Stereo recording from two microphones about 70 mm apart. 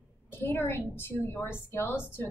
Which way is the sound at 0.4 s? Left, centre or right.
Left.